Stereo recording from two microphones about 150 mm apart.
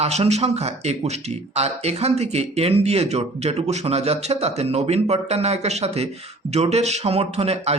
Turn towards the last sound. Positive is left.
turn(degrees=-40)  # may be behind; listen again after turning